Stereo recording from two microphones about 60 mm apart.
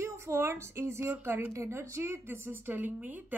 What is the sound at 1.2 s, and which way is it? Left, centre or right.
Speech, right.